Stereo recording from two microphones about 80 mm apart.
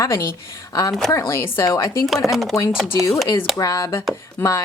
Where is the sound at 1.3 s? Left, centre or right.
Left.